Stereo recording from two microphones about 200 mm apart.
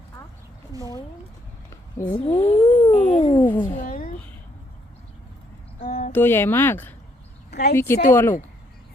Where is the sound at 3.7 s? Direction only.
45° left (ahead or behind).